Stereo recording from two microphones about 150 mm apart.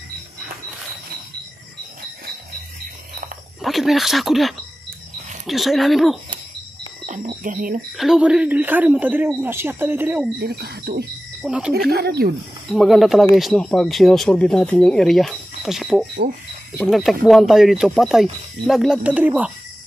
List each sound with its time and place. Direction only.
3.6 s speech: centre (ahead or behind)
7.1 s speech: 60° right (ahead or behind)
8.0 s a man's voice: 5° right (ahead or behind)
10.4 s speech: 90° right
11.4 s a man's voice: 5° right (ahead or behind)
11.7 s speech: 90° right
12.7 s speech: centre (ahead or behind)